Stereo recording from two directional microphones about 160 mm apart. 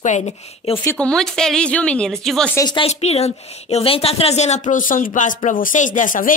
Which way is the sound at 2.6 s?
30° left (ahead or behind).